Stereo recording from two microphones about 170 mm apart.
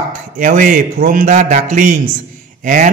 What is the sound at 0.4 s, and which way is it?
A man's voice, 50° right (ahead or behind).